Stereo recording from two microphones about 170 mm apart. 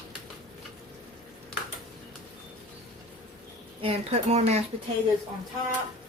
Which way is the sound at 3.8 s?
35° right (ahead or behind).